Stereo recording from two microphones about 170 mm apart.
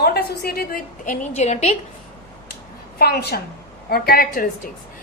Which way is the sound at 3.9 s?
60° left (ahead or behind).